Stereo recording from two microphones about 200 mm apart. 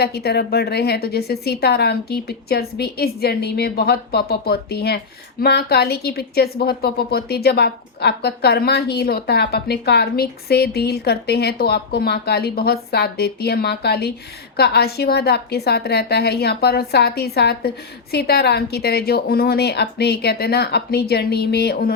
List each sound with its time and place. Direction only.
0.0 s a woman's voice: 55° left (ahead or behind)